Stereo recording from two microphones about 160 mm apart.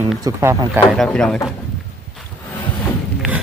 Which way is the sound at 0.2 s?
20° right (ahead or behind).